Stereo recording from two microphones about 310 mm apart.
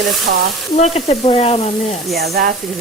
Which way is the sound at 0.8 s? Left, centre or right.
Centre.